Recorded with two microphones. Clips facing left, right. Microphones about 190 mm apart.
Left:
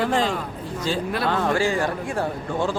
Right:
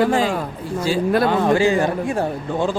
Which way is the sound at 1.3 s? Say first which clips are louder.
Right 5 dB; 15° right (ahead or behind).